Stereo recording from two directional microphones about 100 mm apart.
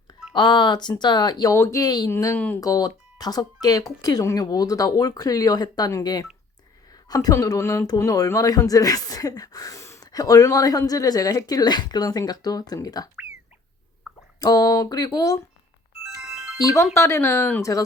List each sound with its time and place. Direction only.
0.3 s speech: 50° left (ahead or behind)
1.5 s speech: 25° left (ahead or behind)
1.8 s speech: 45° left (ahead or behind)
2.0 s speech: 25° left (ahead or behind)
2.6 s a woman's voice: 40° left (ahead or behind)
14.3 s speech: 40° left (ahead or behind)
16.2 s music: 5° right (ahead or behind)
16.8 s speech: 25° left (ahead or behind)
17.6 s speech: 35° left (ahead or behind)